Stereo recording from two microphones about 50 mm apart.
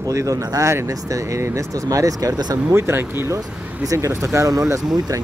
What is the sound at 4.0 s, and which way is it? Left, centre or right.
Speech, right.